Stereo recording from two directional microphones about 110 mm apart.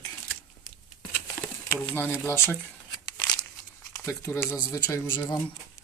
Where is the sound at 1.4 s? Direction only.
20° left (ahead or behind).